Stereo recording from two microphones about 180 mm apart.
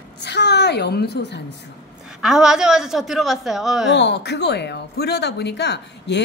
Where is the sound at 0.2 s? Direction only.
70° left (ahead or behind).